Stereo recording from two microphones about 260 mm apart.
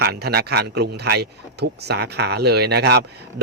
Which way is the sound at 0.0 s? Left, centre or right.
Right.